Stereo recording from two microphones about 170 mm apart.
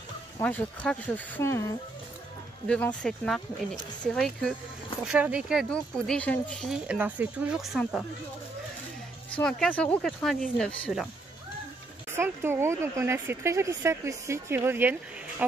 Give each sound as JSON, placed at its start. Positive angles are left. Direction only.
{"t": 0.4, "sound": "speech", "side_deg": 10}
{"t": 2.7, "sound": "speech", "side_deg": 5}
{"t": 5.0, "sound": "speech", "side_deg": -5}
{"t": 9.3, "sound": "speech", "side_deg": 5}
{"t": 12.2, "sound": "speech", "side_deg": -15}